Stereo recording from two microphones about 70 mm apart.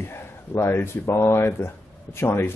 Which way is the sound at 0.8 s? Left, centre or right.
Left.